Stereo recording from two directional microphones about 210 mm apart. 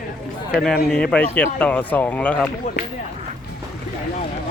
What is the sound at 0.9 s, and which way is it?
Speech, 5° left (ahead or behind).